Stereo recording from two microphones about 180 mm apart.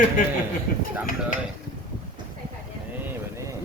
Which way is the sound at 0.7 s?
50° left (ahead or behind).